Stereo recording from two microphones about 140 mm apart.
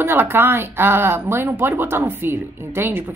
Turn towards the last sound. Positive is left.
turn(degrees=-15)  # may be behind; listen again after turning